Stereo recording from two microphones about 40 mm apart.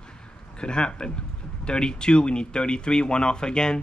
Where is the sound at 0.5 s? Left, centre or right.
Left.